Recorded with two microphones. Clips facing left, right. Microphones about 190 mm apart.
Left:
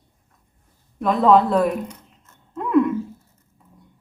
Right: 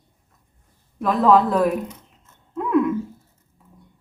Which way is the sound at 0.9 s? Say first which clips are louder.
Left 1 dB; centre (ahead or behind).